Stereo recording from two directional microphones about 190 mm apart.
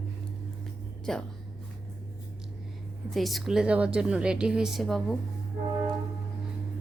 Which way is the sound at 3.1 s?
Centre (ahead or behind).